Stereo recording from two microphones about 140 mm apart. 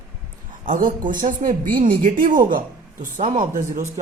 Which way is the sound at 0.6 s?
80° right.